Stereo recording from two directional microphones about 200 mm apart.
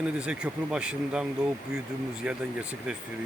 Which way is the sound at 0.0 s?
5° right (ahead or behind).